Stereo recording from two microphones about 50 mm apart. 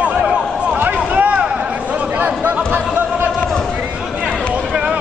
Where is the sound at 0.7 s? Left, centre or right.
Right.